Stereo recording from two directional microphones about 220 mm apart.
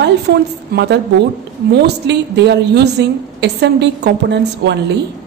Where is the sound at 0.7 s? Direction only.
50° right (ahead or behind).